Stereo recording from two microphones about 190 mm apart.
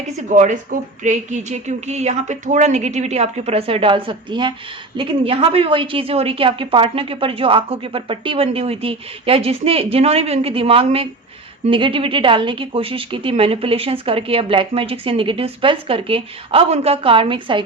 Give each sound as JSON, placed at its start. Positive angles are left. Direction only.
{"t": 0.3, "sound": "a woman's voice", "side_deg": -40}